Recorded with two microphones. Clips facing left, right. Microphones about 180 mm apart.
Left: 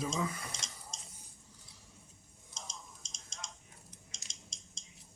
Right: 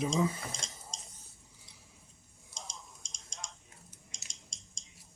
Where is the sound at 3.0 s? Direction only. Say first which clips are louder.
Right 1 dB; 25° left (ahead or behind).